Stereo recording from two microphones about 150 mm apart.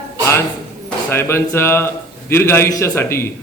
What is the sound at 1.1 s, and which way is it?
A man's voice, 15° left (ahead or behind).